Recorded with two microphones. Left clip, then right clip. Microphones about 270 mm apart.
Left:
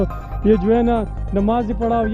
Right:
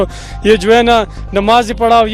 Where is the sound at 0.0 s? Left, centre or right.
Centre.